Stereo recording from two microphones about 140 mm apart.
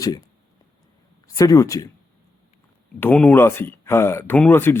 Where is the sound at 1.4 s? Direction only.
25° left (ahead or behind).